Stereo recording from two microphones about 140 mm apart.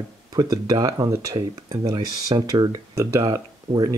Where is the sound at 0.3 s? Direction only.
25° right (ahead or behind).